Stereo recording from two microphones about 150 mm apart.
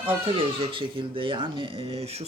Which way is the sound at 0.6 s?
35° right (ahead or behind).